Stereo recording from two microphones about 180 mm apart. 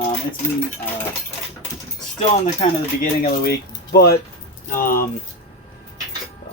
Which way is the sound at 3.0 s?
55° left (ahead or behind).